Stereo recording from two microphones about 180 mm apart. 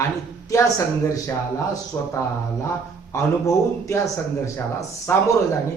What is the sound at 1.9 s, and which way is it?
Speech, 15° left (ahead or behind).